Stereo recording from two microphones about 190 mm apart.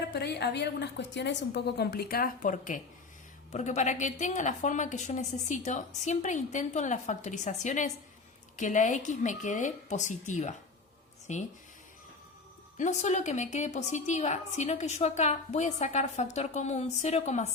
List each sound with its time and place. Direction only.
0.1 s a woman's voice: 60° left (ahead or behind); by 11.4 s 40° left (ahead or behind)
12.7 s a woman's voice: 40° left (ahead or behind)